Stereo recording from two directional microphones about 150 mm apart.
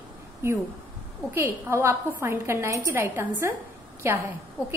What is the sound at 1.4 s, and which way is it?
A woman's voice, 15° right (ahead or behind).